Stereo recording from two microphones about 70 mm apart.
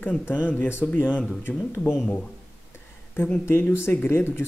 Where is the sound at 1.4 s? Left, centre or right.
Left.